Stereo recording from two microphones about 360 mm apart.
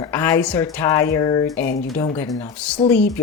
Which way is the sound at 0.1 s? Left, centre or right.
Centre.